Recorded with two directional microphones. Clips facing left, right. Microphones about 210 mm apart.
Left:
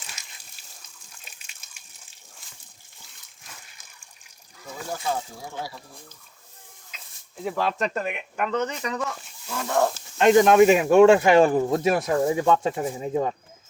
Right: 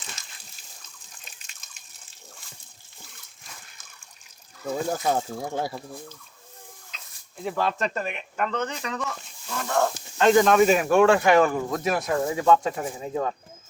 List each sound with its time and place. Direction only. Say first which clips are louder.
1.2 s water: right 1 dB; 10° left (ahead or behind)
5.0 s speech: right 4 dB; 50° right (ahead or behind)
6.9 s a sound: left 4 dB; 10° left (ahead or behind)
7.4 s speech: left 1 dB; centre (ahead or behind)
10.2 s speech: left 2 dB; 20° left (ahead or behind)